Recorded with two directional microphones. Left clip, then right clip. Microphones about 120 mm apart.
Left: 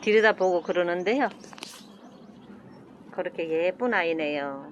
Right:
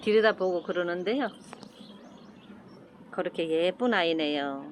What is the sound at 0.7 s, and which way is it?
Speech, 20° left (ahead or behind).